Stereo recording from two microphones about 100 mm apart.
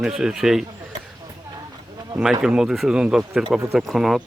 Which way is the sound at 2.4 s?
5° right (ahead or behind).